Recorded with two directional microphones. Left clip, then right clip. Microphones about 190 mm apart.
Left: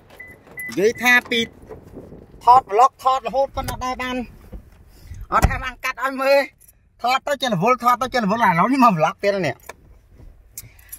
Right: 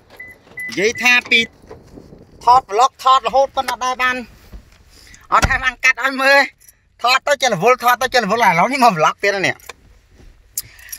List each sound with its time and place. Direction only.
1.0 s speech: 25° left (ahead or behind)
2.4 s speech: 10° left (ahead or behind)
10.5 s vehicle: 5° left (ahead or behind)